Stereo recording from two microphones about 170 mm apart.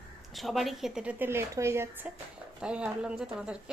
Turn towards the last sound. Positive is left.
turn(degrees=-5)  # may be behind; listen again after turning